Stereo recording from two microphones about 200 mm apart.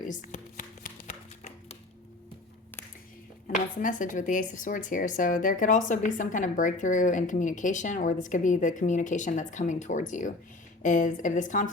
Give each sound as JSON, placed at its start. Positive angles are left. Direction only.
{"t": 0.1, "sound": "shuffling cards", "side_deg": 40}
{"t": 3.4, "sound": "speech", "side_deg": 40}